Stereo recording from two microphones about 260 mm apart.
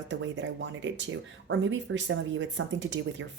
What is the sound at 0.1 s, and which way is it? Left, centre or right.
Speech, right.